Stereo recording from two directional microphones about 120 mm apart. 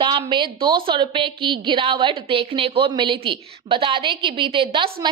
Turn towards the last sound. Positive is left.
turn(degrees=-45)  # may be behind; listen again after turning